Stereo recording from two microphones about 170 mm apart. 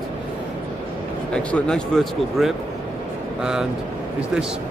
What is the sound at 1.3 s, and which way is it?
A man's voice, 5° left (ahead or behind).